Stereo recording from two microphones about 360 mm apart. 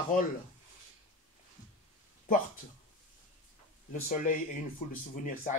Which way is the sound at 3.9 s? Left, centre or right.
Left.